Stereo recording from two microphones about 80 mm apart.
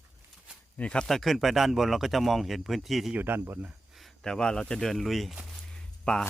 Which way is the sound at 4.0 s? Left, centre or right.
Centre.